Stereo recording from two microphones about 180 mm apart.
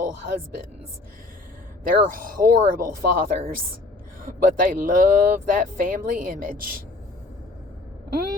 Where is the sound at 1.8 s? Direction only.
50° right (ahead or behind).